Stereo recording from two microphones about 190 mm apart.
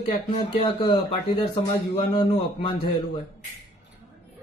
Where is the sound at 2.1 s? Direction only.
25° left (ahead or behind).